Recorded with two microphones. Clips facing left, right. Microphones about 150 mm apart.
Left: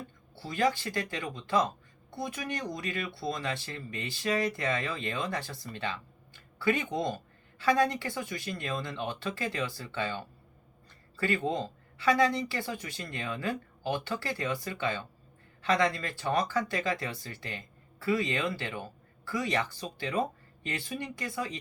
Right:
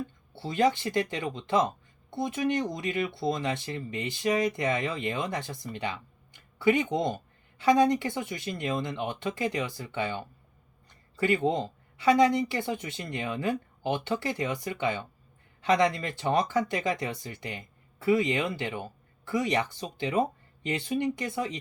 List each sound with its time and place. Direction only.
0.3 s speech: 25° right (ahead or behind)